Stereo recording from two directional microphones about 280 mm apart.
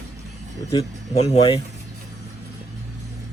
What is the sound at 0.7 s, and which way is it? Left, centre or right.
Speech, centre.